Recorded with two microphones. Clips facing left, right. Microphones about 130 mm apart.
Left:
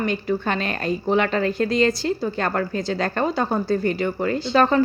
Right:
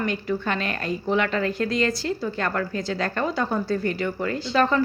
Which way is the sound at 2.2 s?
40° left (ahead or behind).